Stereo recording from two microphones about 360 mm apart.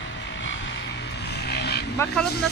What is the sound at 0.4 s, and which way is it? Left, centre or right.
Vehicle, left.